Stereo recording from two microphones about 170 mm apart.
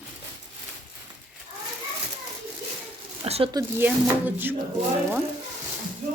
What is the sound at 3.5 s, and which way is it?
Speech, 20° right (ahead or behind).